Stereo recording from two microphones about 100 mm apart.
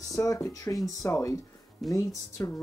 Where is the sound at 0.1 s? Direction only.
35° left (ahead or behind).